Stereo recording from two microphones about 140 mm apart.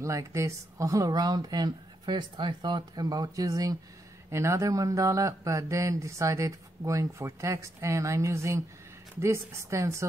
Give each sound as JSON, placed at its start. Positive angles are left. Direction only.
{"t": 0.0, "sound": "speech", "side_deg": -20}